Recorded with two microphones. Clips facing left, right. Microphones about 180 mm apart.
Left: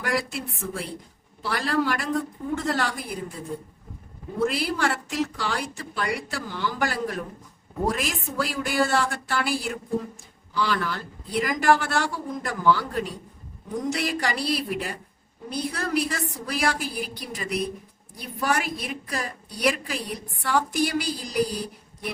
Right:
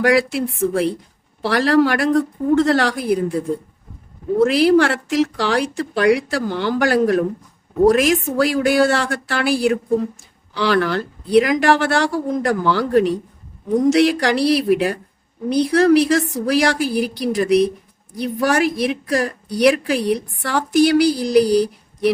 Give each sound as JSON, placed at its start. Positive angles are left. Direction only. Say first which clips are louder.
{"t": 0.0, "sound": "speech", "louder": "right 12 dB", "side_deg": -75}
{"t": 4.4, "sound": "a woman's voice", "louder": "right 11 dB", "side_deg": -75}